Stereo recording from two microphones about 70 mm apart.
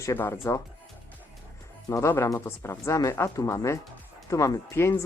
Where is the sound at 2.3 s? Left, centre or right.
Left.